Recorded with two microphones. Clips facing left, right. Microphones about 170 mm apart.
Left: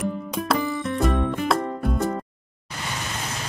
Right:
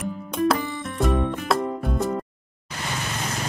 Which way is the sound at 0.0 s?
Centre (ahead or behind).